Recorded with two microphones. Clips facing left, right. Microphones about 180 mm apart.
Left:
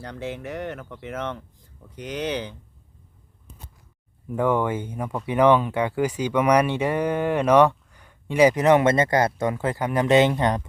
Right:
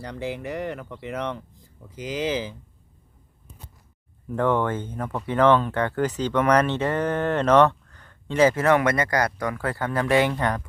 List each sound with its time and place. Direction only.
0.0 s speech: centre (ahead or behind)
4.3 s speech: 10° left (ahead or behind)